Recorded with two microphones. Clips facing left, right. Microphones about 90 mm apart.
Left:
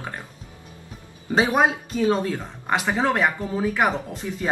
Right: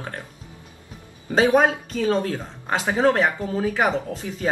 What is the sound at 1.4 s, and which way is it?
Speech, 15° left (ahead or behind).